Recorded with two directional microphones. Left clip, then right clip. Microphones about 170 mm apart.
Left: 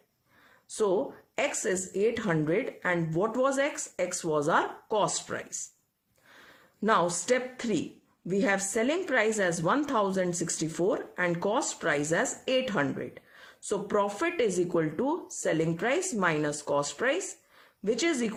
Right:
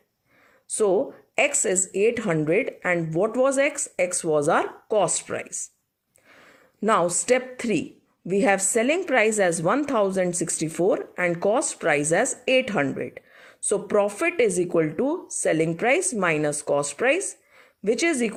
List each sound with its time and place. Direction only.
1.4 s speech: 25° right (ahead or behind)
6.8 s speech: 25° right (ahead or behind)